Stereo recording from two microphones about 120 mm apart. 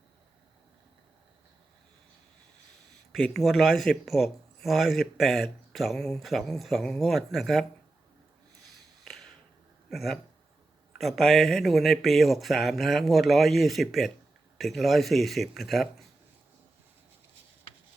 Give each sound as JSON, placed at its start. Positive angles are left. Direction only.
{"t": 3.1, "sound": "speech", "side_deg": 5}
{"t": 9.9, "sound": "speech", "side_deg": 0}